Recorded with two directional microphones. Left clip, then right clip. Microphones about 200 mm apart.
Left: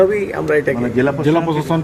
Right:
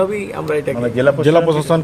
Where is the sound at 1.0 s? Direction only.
50° right (ahead or behind).